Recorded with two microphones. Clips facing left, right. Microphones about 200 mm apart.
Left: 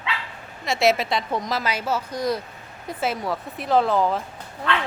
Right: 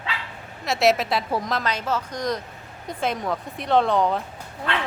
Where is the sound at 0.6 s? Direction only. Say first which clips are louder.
Even; centre (ahead or behind).